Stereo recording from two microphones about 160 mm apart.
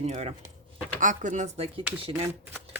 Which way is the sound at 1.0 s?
55° right (ahead or behind).